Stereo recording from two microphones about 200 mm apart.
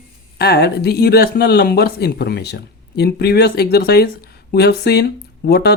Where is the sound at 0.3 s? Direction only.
55° left (ahead or behind).